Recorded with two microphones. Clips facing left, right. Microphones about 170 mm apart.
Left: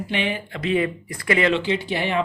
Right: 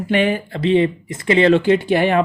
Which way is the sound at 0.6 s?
30° right (ahead or behind).